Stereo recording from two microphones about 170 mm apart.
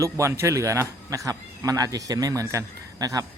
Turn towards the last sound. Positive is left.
turn(degrees=-20)  # may be behind; listen again after turning